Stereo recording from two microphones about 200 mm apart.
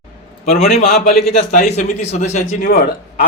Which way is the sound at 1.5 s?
35° left (ahead or behind).